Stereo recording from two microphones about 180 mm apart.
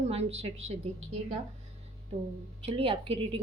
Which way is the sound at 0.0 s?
35° right (ahead or behind).